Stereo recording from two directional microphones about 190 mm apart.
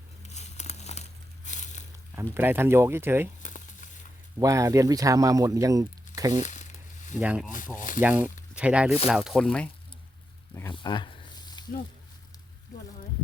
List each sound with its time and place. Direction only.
0.3 s crumpling: 35° left (ahead or behind)
1.5 s a sound: 40° left (ahead or behind)
2.3 s speech: 10° right (ahead or behind)
3.4 s crumpling: 40° left (ahead or behind)
4.4 s speech: 15° right (ahead or behind)
6.4 s a sound: 40° left (ahead or behind)
7.2 s speech: 5° right (ahead or behind)
7.8 s speech: 45° left (ahead or behind)
8.0 s speech: 10° right (ahead or behind); by 9.6 s 5° left (ahead or behind)
10.7 s a sound: 25° left (ahead or behind)